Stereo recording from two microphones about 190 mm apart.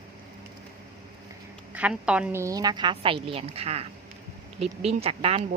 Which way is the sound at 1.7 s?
5° right (ahead or behind).